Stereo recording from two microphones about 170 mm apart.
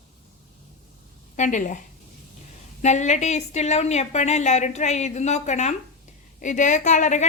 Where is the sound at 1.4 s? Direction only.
50° left (ahead or behind).